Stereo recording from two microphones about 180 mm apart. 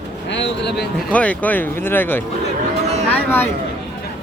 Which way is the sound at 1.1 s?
10° left (ahead or behind).